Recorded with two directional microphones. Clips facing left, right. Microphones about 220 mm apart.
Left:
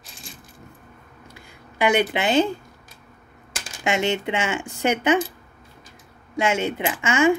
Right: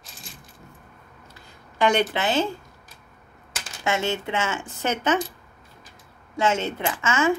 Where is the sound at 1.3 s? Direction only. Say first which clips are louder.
Left 3 dB; 10° left (ahead or behind).